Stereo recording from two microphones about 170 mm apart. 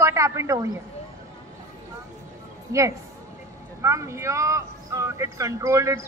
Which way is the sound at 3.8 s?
15° right (ahead or behind).